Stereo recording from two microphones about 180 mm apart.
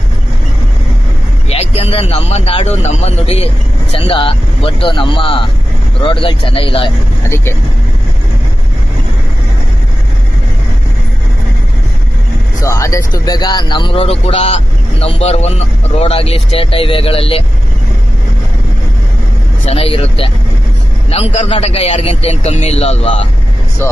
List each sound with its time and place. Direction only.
1.5 s speech: 35° left (ahead or behind)
7.2 s speech: 15° left (ahead or behind)
12.5 s speech: 15° left (ahead or behind)
19.6 s speech: 30° left (ahead or behind)
23.8 s speech: 10° left (ahead or behind)